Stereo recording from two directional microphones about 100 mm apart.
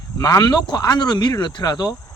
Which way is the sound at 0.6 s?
45° left (ahead or behind).